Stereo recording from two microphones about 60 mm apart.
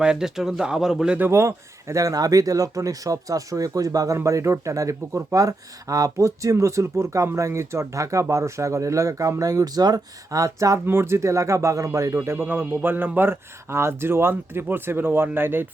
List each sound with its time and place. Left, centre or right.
0.0 s speech: centre
1.3 s speech: right
4.2 s speech: right
9.4 s speech: right
10.8 s speech: right
12.5 s speech: right